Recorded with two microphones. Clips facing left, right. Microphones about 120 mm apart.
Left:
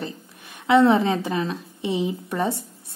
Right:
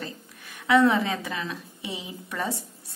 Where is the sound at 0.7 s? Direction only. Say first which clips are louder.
Left 4 dB; 25° left (ahead or behind).